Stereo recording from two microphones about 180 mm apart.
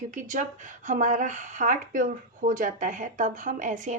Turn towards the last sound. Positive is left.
turn(degrees=-45)  # may be behind; listen again after turning